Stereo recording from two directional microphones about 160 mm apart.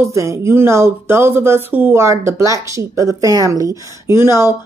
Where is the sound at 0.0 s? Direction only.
20° right (ahead or behind).